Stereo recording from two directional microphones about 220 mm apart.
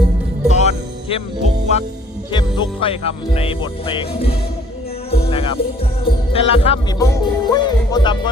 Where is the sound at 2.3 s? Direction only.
20° left (ahead or behind).